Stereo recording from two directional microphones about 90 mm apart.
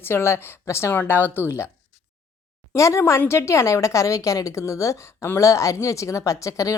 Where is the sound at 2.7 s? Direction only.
35° left (ahead or behind).